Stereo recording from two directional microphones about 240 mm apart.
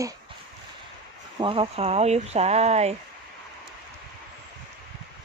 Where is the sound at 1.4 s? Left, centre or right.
Right.